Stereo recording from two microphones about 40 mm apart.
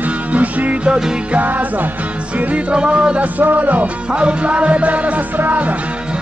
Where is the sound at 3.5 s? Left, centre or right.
Right.